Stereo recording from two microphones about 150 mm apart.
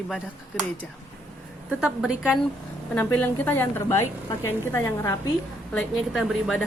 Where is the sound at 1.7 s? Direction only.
5° right (ahead or behind).